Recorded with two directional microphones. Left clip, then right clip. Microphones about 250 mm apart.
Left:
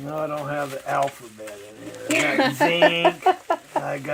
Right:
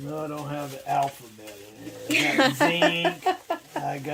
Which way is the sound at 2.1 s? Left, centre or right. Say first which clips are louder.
Left 1 dB; centre.